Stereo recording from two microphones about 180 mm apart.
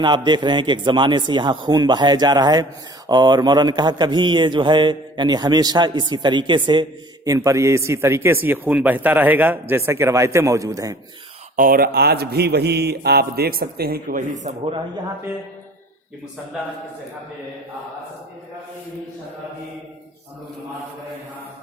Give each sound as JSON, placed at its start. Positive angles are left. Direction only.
{"t": 0.0, "sound": "a man's voice", "side_deg": -25}
{"t": 11.5, "sound": "speech", "side_deg": -50}